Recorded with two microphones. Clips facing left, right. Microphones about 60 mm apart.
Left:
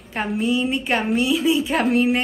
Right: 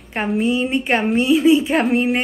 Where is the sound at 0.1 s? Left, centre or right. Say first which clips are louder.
Right 3 dB; right.